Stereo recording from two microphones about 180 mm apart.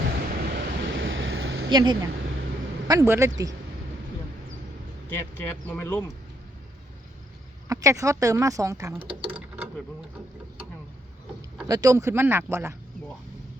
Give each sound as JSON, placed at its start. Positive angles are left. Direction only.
{"t": 0.5, "sound": "a sound", "side_deg": -85}
{"t": 1.7, "sound": "speech", "side_deg": -25}
{"t": 5.0, "sound": "speech", "side_deg": 10}
{"t": 7.7, "sound": "speech", "side_deg": -20}
{"t": 9.2, "sound": "mechanisms", "side_deg": -10}
{"t": 11.7, "sound": "speech", "side_deg": -20}